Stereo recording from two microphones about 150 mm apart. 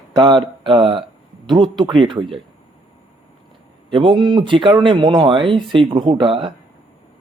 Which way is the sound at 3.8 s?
35° right (ahead or behind).